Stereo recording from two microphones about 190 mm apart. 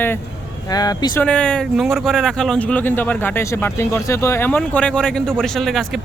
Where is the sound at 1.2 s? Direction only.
5° left (ahead or behind).